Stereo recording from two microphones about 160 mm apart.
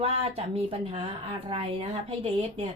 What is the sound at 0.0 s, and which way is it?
A woman's voice, 40° right (ahead or behind).